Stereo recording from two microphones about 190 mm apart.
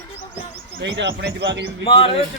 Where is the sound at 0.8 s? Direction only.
70° right (ahead or behind).